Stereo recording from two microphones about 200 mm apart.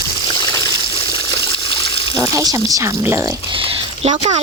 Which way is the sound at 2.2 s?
15° right (ahead or behind).